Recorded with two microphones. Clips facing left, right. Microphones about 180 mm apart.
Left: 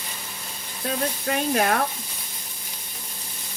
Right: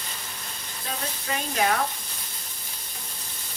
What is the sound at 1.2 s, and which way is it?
Speech, 55° left (ahead or behind).